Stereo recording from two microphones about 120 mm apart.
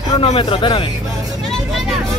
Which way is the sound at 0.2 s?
50° left (ahead or behind).